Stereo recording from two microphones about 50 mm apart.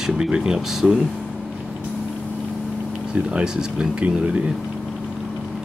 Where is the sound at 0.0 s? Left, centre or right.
Centre.